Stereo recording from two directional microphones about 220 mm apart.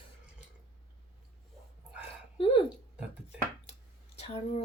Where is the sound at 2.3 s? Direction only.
25° left (ahead or behind).